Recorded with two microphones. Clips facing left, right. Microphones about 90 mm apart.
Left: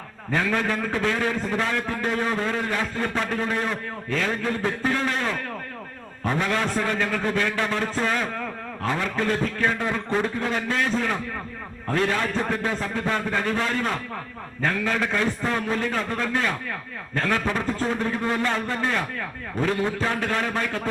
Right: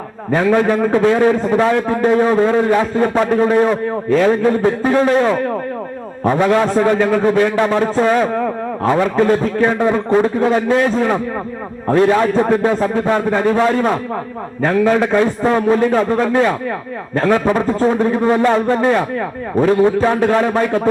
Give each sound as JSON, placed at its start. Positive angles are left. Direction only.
{"t": 0.3, "sound": "a man's voice", "side_deg": -35}
{"t": 7.8, "sound": "a man's voice", "side_deg": -35}
{"t": 17.6, "sound": "a man's voice", "side_deg": -40}